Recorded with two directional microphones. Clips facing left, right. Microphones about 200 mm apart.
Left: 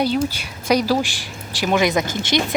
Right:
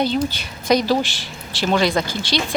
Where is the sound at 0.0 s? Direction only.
10° left (ahead or behind).